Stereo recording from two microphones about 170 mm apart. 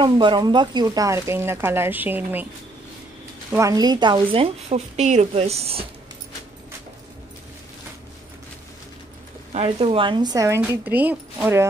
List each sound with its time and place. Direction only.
0.0 s speech: 25° right (ahead or behind); by 2.4 s 10° right (ahead or behind)
3.5 s a woman's voice: 20° right (ahead or behind); by 5.9 s 35° right (ahead or behind)
9.5 s speech: 35° right (ahead or behind); by 10.6 s 20° right (ahead or behind)
10.6 s speech: 10° right (ahead or behind)